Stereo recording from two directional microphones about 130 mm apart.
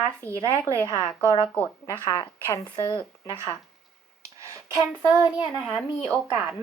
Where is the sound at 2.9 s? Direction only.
35° left (ahead or behind).